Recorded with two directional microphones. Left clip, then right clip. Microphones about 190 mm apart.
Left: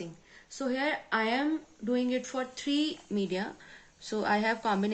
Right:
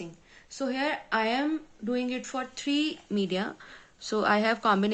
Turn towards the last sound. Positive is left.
turn(degrees=-30)  # may be behind; listen again after turning